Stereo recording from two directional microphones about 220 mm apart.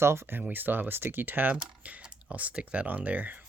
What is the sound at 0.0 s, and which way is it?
Speech, 10° right (ahead or behind).